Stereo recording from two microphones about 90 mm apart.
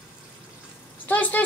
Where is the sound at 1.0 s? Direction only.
20° left (ahead or behind).